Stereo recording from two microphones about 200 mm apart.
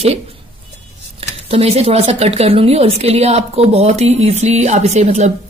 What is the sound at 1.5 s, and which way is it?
A woman's voice, 30° right (ahead or behind).